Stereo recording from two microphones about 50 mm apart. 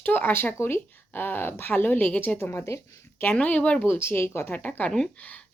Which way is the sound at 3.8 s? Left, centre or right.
Left.